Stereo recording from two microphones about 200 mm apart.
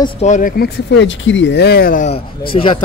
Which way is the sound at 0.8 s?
65° left (ahead or behind).